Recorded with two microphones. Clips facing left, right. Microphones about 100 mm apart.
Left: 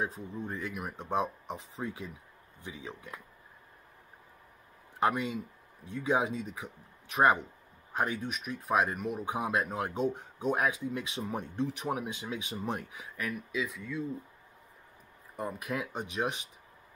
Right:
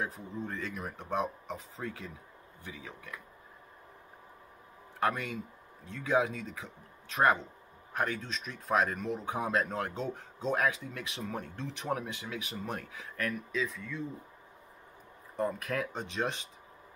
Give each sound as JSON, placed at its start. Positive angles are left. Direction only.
{"t": 0.0, "sound": "speech", "side_deg": 15}
{"t": 5.0, "sound": "speech", "side_deg": 15}
{"t": 15.3, "sound": "speech", "side_deg": 15}